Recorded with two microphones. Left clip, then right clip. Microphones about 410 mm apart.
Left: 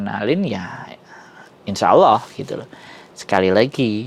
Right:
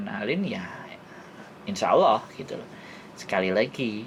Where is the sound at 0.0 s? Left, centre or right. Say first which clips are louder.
Left 9 dB; left.